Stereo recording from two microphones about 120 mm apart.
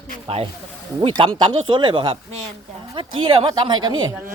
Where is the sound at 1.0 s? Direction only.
45° right (ahead or behind).